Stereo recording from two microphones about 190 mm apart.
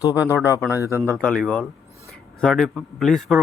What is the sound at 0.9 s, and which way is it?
Speech, 15° right (ahead or behind).